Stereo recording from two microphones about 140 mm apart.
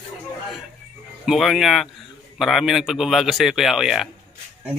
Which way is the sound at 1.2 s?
Centre (ahead or behind).